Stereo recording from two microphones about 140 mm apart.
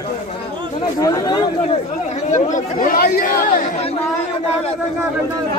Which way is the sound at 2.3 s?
60° left (ahead or behind).